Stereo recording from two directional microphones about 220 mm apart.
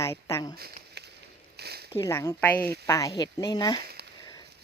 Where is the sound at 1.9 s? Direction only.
10° left (ahead or behind).